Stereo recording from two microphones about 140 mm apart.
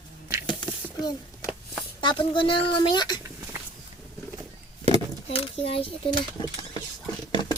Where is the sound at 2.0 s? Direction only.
35° left (ahead or behind).